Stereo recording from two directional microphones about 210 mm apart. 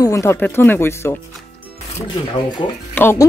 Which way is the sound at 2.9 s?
10° left (ahead or behind).